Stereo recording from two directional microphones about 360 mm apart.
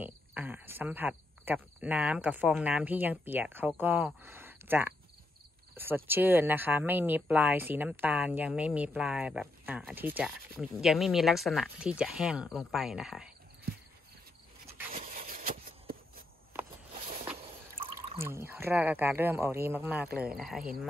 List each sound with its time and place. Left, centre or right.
0.0 s speech: centre
15.0 s a sound: right
18.1 s speech: centre